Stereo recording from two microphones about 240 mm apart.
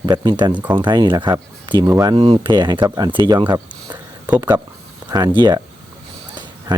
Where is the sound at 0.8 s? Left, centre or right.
Centre.